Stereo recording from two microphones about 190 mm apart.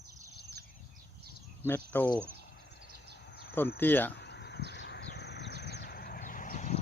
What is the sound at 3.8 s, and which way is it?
Speech, 10° left (ahead or behind).